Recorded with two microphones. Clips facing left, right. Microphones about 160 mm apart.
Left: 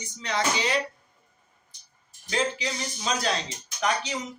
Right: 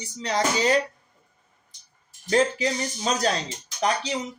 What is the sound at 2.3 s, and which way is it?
Speech, 45° right (ahead or behind).